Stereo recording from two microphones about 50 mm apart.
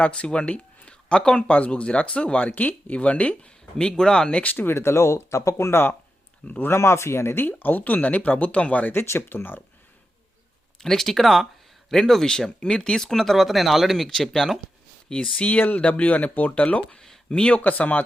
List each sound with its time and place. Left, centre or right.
0.0 s speech: left
3.8 s speech: centre
4.5 s speech: left
6.4 s speech: left
6.7 s speech: left
7.4 s speech: left
9.0 s speech: left
10.8 s speech: centre
15.1 s speech: left
16.9 s speech: centre
17.6 s speech: left